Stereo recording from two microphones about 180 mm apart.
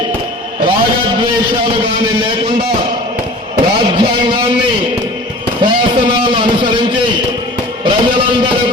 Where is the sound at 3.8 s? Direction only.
25° right (ahead or behind).